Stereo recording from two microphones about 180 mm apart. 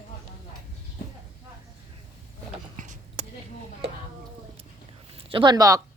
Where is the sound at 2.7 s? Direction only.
45° right (ahead or behind).